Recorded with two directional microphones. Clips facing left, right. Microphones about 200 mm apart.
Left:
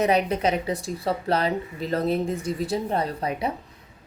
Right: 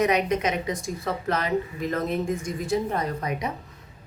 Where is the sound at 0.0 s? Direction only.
30° left (ahead or behind).